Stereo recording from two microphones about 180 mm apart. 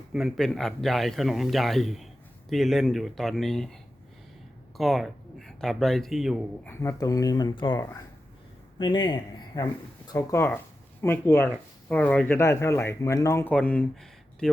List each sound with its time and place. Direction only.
0.1 s speech: centre (ahead or behind)
4.8 s speech: centre (ahead or behind)
6.7 s a man's voice: 15° left (ahead or behind)